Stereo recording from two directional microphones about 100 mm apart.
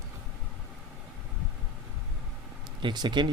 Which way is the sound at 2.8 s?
50° right (ahead or behind).